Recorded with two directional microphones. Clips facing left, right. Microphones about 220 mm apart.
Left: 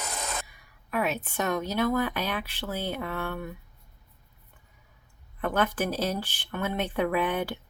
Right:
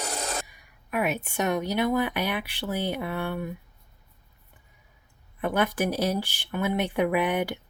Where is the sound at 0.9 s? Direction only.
15° right (ahead or behind).